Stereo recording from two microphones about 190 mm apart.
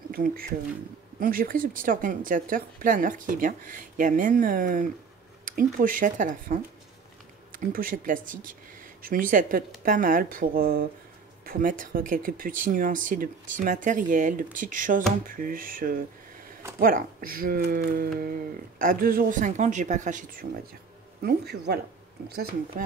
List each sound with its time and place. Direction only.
0.1 s speech: 50° right (ahead or behind)
21.2 s speech: 55° right (ahead or behind)